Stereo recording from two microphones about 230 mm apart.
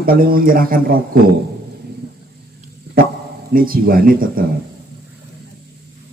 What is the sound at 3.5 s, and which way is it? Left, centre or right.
Speech, right.